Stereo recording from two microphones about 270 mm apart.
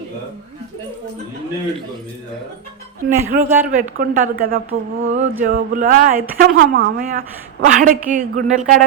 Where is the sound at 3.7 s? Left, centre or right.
Right.